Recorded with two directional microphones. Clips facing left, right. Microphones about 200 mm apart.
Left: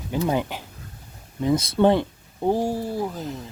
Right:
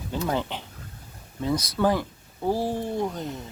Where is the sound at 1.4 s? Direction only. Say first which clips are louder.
Left 5 dB; 25° left (ahead or behind); by 3.4 s centre (ahead or behind).